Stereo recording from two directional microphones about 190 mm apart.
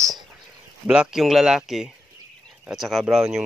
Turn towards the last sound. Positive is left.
turn(degrees=0)  # may be behind; listen again after turning